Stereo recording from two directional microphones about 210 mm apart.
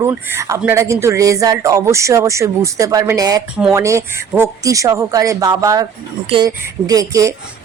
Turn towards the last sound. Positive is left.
turn(degrees=-15)  # may be behind; listen again after turning